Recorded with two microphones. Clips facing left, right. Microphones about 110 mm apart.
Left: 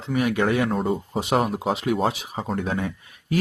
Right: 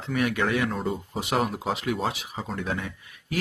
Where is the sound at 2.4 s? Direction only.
45° left (ahead or behind).